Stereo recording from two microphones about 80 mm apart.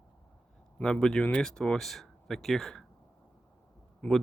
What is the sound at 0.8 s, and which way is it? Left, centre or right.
Speech, centre.